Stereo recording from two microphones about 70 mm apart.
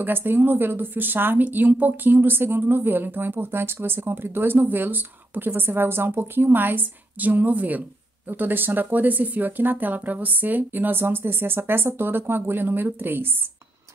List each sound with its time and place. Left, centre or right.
0.0 s speech: right